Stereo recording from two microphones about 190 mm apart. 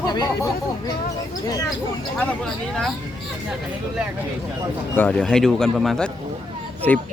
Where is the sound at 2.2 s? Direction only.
5° left (ahead or behind).